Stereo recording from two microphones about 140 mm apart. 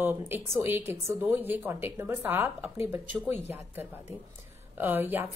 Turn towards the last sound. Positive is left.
turn(degrees=-15)  # may be behind; listen again after turning